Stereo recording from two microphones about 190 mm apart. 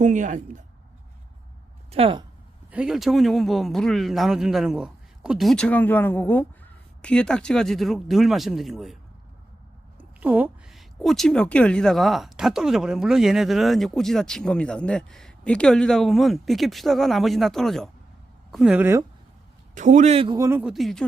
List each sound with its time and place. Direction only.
0.0 s a man's voice: 40° right (ahead or behind)
1.9 s speech: 30° right (ahead or behind)
2.6 s a woman's voice: 5° right (ahead or behind)
10.0 s a woman's voice: 10° right (ahead or behind)
19.7 s a man's voice: 40° right (ahead or behind)
20.4 s a woman's voice: 10° right (ahead or behind)